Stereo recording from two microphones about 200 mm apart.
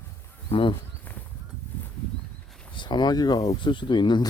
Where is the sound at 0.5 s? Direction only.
25° left (ahead or behind).